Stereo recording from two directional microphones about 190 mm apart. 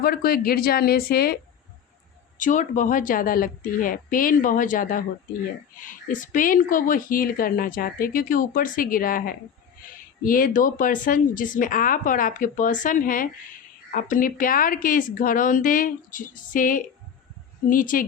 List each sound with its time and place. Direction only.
0.0 s a woman's voice: 50° left (ahead or behind)
2.4 s a woman's voice: 40° left (ahead or behind)